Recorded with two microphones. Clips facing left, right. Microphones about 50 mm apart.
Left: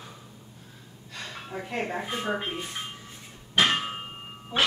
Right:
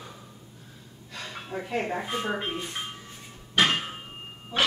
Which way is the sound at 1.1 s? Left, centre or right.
Centre.